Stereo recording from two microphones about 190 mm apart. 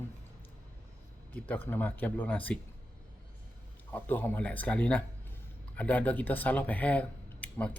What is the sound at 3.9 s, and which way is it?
Speech, 10° left (ahead or behind).